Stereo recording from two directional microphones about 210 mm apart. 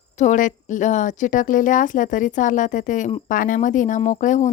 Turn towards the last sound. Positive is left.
turn(degrees=35)  # may be behind; listen again after turning